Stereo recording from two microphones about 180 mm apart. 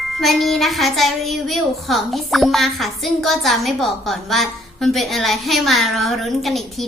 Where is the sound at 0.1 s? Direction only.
Centre (ahead or behind).